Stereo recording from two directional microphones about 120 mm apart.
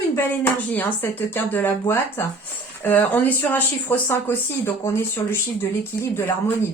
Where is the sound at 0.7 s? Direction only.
15° left (ahead or behind).